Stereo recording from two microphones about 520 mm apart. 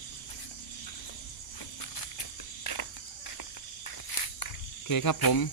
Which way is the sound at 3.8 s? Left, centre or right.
Left.